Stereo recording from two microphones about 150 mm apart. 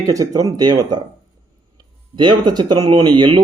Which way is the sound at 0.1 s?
25° right (ahead or behind).